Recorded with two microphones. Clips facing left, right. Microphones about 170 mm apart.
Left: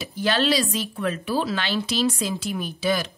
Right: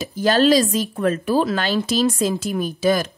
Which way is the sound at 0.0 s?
45° right (ahead or behind).